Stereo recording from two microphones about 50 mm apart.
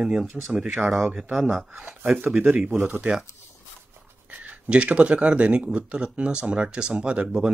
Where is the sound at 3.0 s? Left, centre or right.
Centre.